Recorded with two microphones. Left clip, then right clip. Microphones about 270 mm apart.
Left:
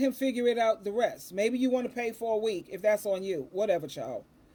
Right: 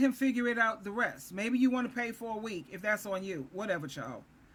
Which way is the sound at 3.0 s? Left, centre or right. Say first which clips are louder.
Left 6 dB; centre.